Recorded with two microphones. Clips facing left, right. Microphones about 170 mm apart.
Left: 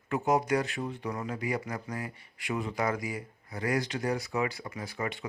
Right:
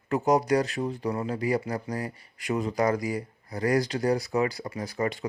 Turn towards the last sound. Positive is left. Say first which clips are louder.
# right 6 dB
turn(degrees=-40)  # may be behind; listen again after turning